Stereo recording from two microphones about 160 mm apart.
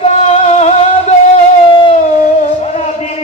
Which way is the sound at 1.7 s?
30° left (ahead or behind).